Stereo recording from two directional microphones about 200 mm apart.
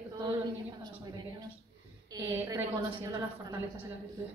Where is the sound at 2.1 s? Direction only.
15° right (ahead or behind).